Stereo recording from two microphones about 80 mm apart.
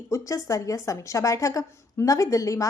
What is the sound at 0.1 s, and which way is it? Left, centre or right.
A woman's voice, left.